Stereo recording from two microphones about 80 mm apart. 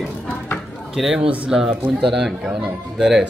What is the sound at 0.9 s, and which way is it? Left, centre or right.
A man's voice, centre.